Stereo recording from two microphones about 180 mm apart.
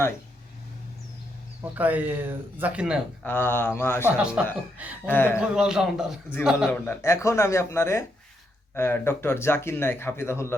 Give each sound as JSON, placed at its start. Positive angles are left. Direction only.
{"t": 1.7, "sound": "speech", "side_deg": -10}
{"t": 3.2, "sound": "speech", "side_deg": 10}
{"t": 4.0, "sound": "a man's voice", "side_deg": -5}
{"t": 5.0, "sound": "speech", "side_deg": 10}
{"t": 5.4, "sound": "a man's voice", "side_deg": -5}
{"t": 6.7, "sound": "speech", "side_deg": 10}